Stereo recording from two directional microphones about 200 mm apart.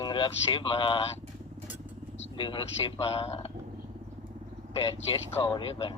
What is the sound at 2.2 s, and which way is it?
Speech, 25° left (ahead or behind).